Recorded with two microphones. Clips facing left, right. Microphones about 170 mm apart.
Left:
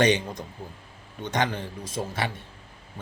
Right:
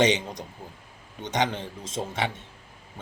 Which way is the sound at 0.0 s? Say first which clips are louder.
Left 1 dB; 20° right (ahead or behind).